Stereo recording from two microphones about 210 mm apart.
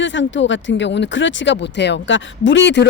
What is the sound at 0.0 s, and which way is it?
Speech, 60° left (ahead or behind).